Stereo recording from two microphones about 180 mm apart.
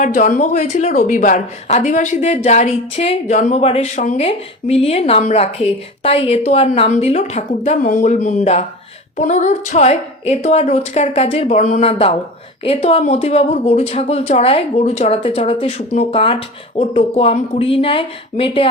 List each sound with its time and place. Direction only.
0.0 s a woman's voice: 45° left (ahead or behind)